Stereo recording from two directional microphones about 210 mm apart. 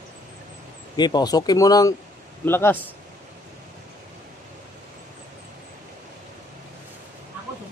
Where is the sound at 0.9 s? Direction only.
20° left (ahead or behind).